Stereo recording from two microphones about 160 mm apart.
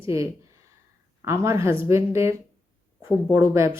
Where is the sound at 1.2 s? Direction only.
20° right (ahead or behind).